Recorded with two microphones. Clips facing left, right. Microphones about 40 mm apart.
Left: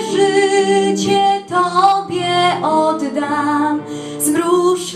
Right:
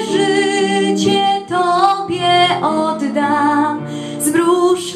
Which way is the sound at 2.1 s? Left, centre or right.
Right.